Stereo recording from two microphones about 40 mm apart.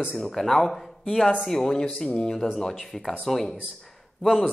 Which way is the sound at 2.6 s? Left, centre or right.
Centre.